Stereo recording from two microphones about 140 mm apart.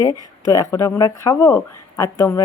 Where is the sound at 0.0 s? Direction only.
25° left (ahead or behind).